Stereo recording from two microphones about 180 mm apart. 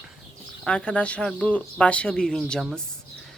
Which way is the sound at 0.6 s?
5° left (ahead or behind).